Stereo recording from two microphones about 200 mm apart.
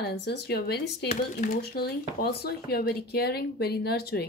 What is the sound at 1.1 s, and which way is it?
Speech, 45° left (ahead or behind).